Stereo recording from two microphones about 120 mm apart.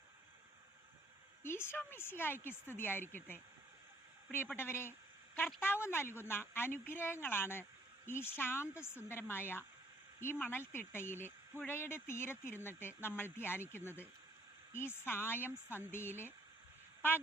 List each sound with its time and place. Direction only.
1.4 s speech: 20° left (ahead or behind)
4.5 s a woman's voice: 20° left (ahead or behind)